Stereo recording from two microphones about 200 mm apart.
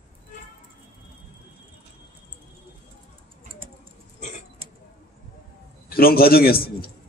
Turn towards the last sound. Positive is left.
turn(degrees=50)  # may be behind; listen again after turning